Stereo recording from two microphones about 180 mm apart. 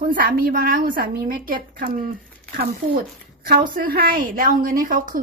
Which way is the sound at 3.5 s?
55° right (ahead or behind).